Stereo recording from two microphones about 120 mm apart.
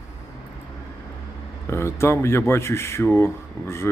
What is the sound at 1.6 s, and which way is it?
Speech, 20° left (ahead or behind).